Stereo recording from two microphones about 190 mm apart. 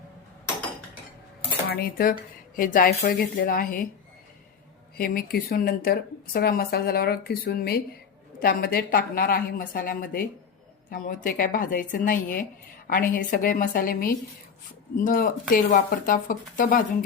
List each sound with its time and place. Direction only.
1.7 s speech: 50° left (ahead or behind)
4.9 s speech: 50° left (ahead or behind)